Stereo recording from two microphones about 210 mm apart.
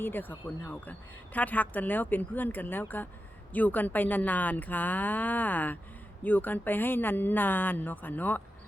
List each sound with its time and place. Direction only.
0.0 s a woman's voice: 10° left (ahead or behind)